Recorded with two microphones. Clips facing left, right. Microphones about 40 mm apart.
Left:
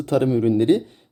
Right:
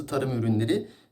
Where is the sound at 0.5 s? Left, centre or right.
Left.